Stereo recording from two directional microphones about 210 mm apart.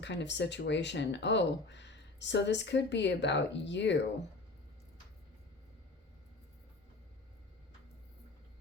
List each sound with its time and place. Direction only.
0.0 s speech: 55° left (ahead or behind)